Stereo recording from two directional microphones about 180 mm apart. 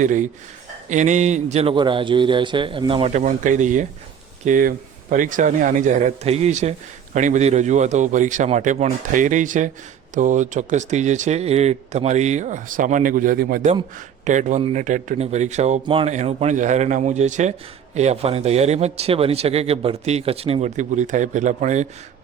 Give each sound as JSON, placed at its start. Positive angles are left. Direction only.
{"t": 0.0, "sound": "speech", "side_deg": -45}